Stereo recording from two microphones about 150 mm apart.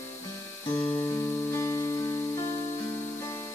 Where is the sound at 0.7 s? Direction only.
20° left (ahead or behind).